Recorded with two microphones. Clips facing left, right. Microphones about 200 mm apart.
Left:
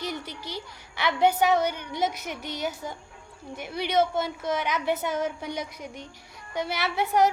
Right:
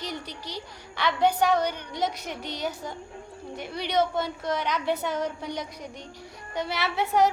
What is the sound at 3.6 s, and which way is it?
A woman's voice, 5° left (ahead or behind).